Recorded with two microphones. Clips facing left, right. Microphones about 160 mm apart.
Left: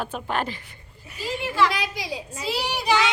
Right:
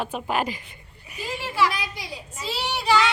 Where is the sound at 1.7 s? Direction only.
90° left.